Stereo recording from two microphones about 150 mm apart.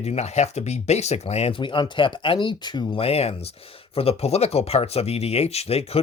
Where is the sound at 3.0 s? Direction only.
45° left (ahead or behind).